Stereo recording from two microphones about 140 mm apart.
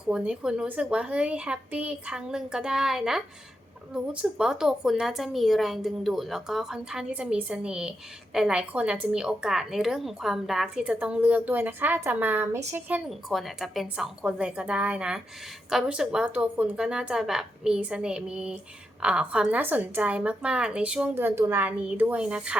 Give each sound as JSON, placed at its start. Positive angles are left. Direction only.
{"t": 0.0, "sound": "a woman's voice", "side_deg": -5}
{"t": 13.1, "sound": "a woman's voice", "side_deg": 0}